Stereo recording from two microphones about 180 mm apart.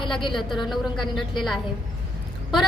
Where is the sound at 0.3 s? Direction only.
Centre (ahead or behind).